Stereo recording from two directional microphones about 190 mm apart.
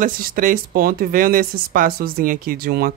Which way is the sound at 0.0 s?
50° right (ahead or behind).